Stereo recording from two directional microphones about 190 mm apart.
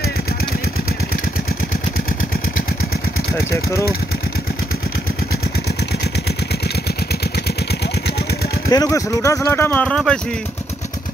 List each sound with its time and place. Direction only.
8.6 s speech: 15° left (ahead or behind)